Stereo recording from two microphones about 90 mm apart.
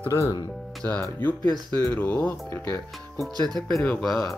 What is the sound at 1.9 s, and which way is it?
Speech, 20° left (ahead or behind).